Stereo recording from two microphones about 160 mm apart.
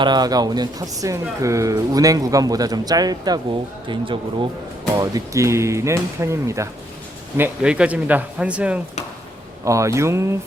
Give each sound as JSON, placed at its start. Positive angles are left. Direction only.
{"t": 0.0, "sound": "speech", "side_deg": -25}
{"t": 4.9, "sound": "speech", "side_deg": -20}
{"t": 9.6, "sound": "speech", "side_deg": -20}